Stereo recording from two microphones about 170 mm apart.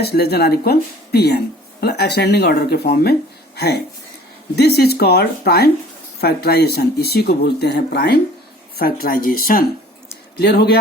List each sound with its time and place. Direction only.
0.0 s speech: 70° left (ahead or behind)
10.3 s speech: 70° left (ahead or behind)